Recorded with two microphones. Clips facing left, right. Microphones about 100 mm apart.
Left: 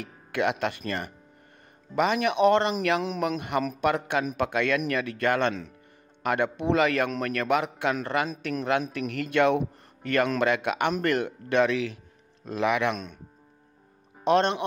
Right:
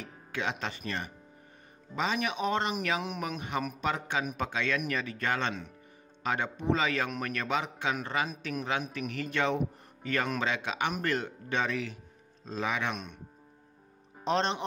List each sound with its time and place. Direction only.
0.0 s a man's voice: 60° left (ahead or behind); by 12.0 s 85° left
12.4 s speech: 75° left (ahead or behind)
14.2 s a man's voice: 65° left (ahead or behind)